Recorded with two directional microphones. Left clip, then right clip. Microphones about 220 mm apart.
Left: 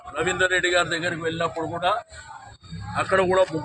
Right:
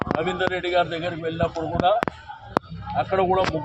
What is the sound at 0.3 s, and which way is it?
A man's voice, 5° left (ahead or behind).